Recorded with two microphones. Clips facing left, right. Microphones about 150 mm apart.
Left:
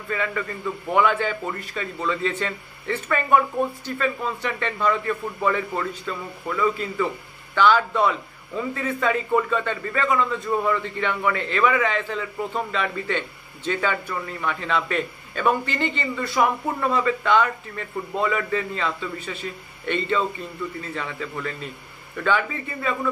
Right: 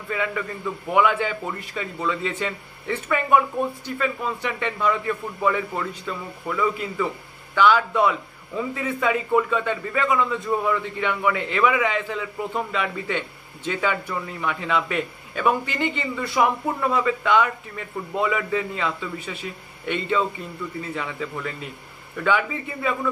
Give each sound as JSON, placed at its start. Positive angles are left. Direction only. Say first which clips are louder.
{"t": 0.1, "sound": "speech", "louder": "even", "side_deg": -10}
{"t": 1.6, "sound": "a man's voice", "louder": "even", "side_deg": -20}
{"t": 2.0, "sound": "speech", "louder": "left 1 dB", "side_deg": -10}